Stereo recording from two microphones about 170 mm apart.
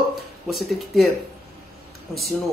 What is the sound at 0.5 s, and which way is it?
Speech, centre (ahead or behind).